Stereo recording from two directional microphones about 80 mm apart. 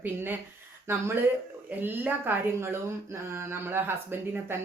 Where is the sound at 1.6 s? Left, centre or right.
Right.